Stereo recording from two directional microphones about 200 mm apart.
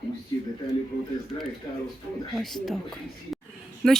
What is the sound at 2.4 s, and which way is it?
Speech, centre (ahead or behind).